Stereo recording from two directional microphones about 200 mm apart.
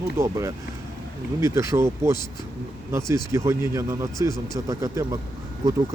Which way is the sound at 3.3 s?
15° right (ahead or behind).